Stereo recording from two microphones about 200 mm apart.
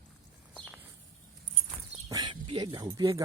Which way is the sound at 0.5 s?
Centre (ahead or behind).